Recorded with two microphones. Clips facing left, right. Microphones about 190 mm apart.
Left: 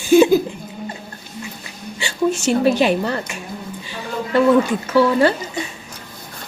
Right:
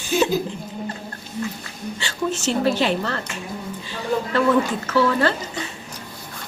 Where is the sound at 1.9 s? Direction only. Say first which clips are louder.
Left 7 dB; 15° left (ahead or behind).